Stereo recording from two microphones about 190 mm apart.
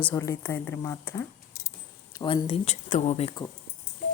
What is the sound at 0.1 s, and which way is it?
Speech, 15° left (ahead or behind).